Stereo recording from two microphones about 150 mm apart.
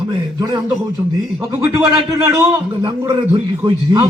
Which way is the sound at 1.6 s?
20° right (ahead or behind).